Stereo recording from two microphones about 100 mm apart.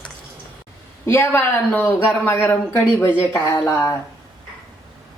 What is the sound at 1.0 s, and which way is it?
Speech, 25° left (ahead or behind).